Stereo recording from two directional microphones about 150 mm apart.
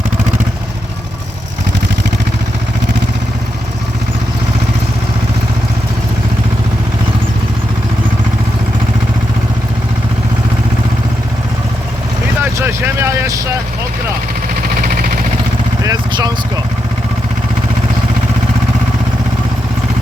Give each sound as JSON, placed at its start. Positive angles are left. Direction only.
{"t": 12.4, "sound": "vehicle", "side_deg": -15}
{"t": 14.8, "sound": "vehicle", "side_deg": -70}
{"t": 15.8, "sound": "vehicle", "side_deg": -25}